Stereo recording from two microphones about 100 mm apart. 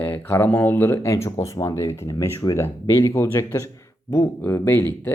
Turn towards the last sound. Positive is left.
turn(degrees=20)  # may be behind; listen again after turning